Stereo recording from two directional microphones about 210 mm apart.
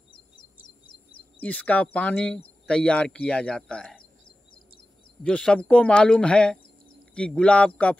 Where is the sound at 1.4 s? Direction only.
5° left (ahead or behind).